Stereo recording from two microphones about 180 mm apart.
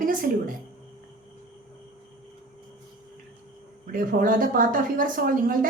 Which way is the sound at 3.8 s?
50° right (ahead or behind).